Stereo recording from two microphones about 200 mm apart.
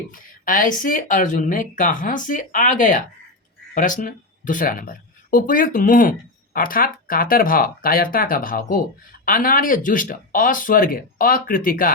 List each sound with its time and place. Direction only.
0.1 s speech: 40° left (ahead or behind)